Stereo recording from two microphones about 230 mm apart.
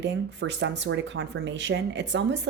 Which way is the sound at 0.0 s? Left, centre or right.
Right.